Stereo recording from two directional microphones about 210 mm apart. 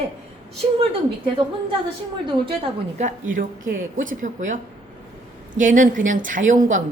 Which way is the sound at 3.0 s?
40° right (ahead or behind).